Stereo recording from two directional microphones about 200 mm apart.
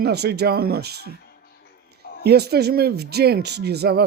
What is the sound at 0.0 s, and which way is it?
Speech, 55° right (ahead or behind).